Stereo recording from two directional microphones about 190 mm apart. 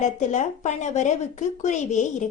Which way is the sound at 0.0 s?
40° left (ahead or behind).